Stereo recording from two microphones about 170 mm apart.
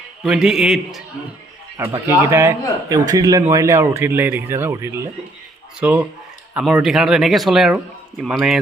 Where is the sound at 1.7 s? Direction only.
15° right (ahead or behind).